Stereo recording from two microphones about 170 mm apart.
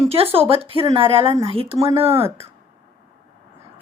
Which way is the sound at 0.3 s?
35° right (ahead or behind).